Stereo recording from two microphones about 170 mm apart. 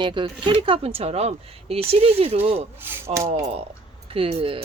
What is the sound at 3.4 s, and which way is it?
Speech, 40° right (ahead or behind).